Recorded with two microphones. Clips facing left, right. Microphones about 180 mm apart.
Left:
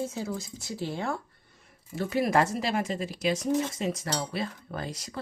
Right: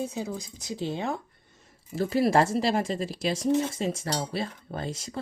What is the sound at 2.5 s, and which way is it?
Cutlery, 30° right (ahead or behind).